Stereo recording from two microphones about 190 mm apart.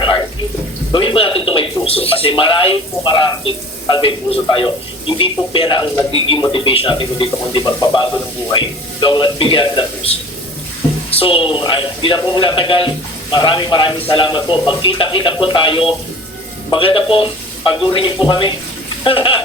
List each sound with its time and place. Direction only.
0.9 s speech: 25° left (ahead or behind)